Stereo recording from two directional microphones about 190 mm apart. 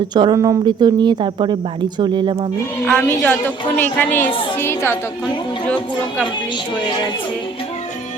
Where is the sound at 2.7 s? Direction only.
10° left (ahead or behind).